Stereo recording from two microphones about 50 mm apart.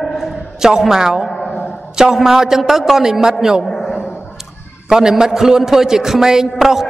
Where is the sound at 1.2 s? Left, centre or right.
Centre.